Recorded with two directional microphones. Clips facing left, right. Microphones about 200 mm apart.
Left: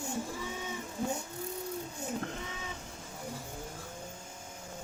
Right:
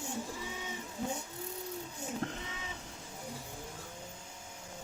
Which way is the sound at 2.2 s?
35° right (ahead or behind).